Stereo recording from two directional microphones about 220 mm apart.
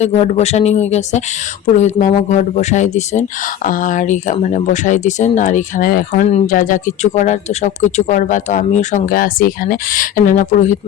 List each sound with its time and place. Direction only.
0.0 s speech: 30° left (ahead or behind)